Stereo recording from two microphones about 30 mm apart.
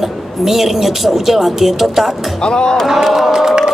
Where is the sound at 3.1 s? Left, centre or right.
Centre.